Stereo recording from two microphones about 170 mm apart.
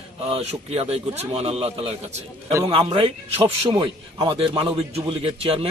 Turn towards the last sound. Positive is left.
turn(degrees=-35)  # may be behind; listen again after turning